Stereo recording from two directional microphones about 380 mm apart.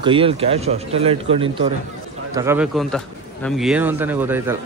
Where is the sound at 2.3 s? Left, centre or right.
Centre.